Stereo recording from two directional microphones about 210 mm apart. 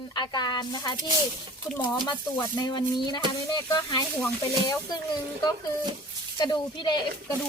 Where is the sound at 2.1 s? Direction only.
15° left (ahead or behind).